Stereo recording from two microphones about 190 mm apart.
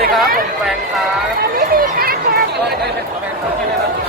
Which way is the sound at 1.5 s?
50° right (ahead or behind).